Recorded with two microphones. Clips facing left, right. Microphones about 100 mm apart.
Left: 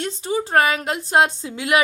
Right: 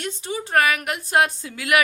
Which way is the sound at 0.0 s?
30° left (ahead or behind).